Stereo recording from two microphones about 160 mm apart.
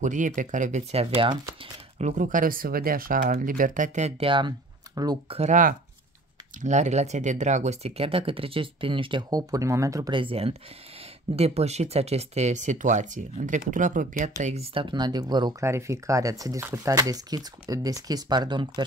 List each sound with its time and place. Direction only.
0.0 s speech: 50° right (ahead or behind)
1.1 s speech: 35° right (ahead or behind)
2.0 s speech: 50° right (ahead or behind)
4.3 s speech: 30° right (ahead or behind)
5.4 s speech: 55° right (ahead or behind); by 18.9 s 30° right (ahead or behind)